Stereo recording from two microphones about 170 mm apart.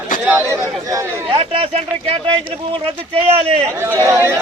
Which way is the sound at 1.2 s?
35° right (ahead or behind).